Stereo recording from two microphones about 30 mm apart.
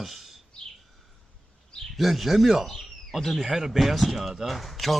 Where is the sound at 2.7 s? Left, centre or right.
Centre.